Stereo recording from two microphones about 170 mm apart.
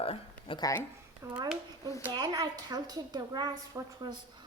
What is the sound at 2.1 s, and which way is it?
A woman's voice, 25° right (ahead or behind).